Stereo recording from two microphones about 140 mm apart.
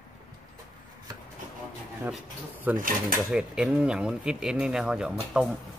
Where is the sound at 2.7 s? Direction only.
80° right.